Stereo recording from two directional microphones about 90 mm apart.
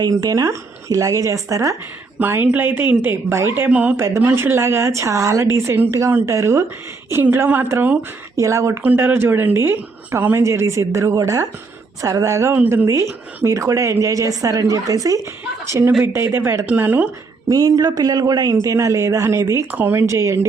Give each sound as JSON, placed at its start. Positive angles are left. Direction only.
{"t": 0.0, "sound": "a woman's voice", "side_deg": -45}
{"t": 2.1, "sound": "speech", "side_deg": -20}
{"t": 3.7, "sound": "speech", "side_deg": -15}
{"t": 3.9, "sound": "a woman's voice", "side_deg": -30}
{"t": 8.4, "sound": "a woman's voice", "side_deg": -35}
{"t": 8.8, "sound": "a woman's voice", "side_deg": -20}
{"t": 16.6, "sound": "speech", "side_deg": -20}
{"t": 17.5, "sound": "a woman's voice", "side_deg": -40}
{"t": 19.7, "sound": "a woman's voice", "side_deg": -25}